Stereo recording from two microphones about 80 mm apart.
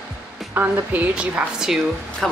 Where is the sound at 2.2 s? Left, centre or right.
Centre.